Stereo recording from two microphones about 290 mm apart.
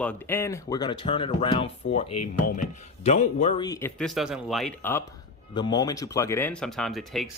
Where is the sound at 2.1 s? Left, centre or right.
Left.